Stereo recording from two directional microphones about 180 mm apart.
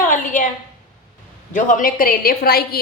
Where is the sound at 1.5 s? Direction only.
50° left (ahead or behind).